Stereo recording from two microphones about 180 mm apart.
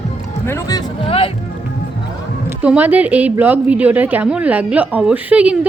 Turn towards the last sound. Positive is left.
turn(degrees=-5)  # may be behind; listen again after turning